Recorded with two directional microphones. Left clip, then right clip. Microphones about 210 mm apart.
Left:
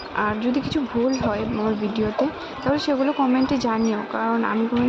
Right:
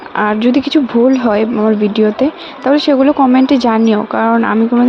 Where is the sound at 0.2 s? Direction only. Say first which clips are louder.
Right 11 dB; 40° right (ahead or behind).